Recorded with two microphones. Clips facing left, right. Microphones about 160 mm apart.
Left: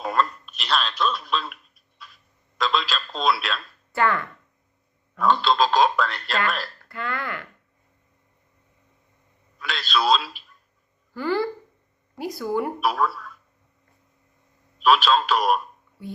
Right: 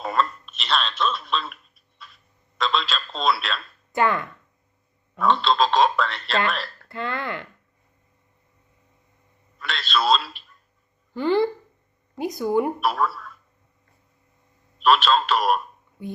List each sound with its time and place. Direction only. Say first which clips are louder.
0.0 s telephone: even; centre (ahead or behind)
3.9 s speech: right 1 dB; 20° right (ahead or behind)
5.1 s speech: even; centre (ahead or behind)
6.8 s speech: right 3 dB; 25° right (ahead or behind)
9.6 s speech: even; centre (ahead or behind)
11.1 s speech: right 4 dB; 20° right (ahead or behind)
12.8 s speech: even; centre (ahead or behind)
14.8 s speech: even; centre (ahead or behind)
16.0 s speech: right 2 dB; 15° right (ahead or behind)